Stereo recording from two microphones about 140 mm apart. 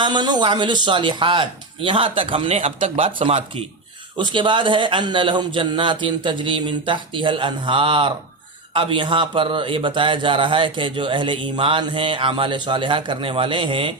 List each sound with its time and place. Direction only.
0.0 s a man's voice: 35° right (ahead or behind)
2.6 s a man's voice: 50° right (ahead or behind)